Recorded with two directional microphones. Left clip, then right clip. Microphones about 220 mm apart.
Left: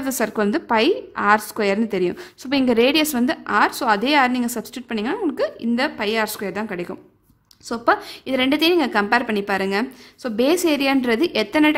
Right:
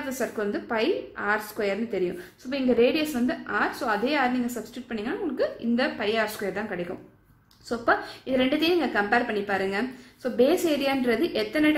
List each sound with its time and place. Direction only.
0.2 s a woman's voice: 50° left (ahead or behind)